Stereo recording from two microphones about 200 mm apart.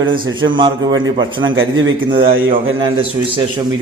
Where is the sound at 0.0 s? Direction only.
25° right (ahead or behind).